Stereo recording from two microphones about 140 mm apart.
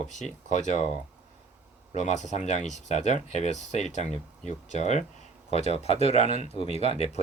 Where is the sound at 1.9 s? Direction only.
55° left (ahead or behind).